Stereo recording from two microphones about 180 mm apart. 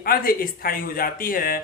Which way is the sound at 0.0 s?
55° left (ahead or behind).